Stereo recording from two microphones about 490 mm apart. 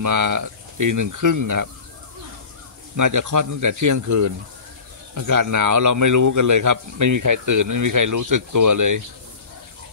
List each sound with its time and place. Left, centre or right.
0.0 s a man's voice: right
3.0 s a man's voice: right